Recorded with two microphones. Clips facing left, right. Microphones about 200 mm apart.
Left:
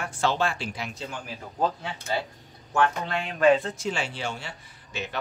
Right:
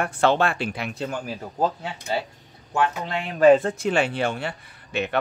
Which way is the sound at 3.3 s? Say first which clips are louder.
Right 5 dB; 45° right (ahead or behind).